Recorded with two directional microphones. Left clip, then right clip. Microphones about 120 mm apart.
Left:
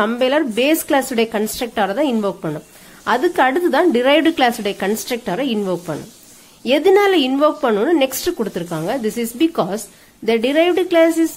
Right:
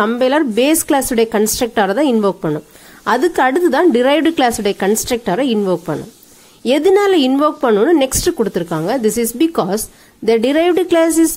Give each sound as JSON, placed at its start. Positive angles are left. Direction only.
{"t": 0.0, "sound": "a woman's voice", "side_deg": -35}